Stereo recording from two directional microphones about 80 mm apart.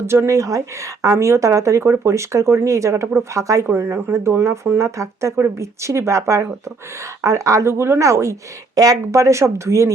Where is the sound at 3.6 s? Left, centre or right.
Right.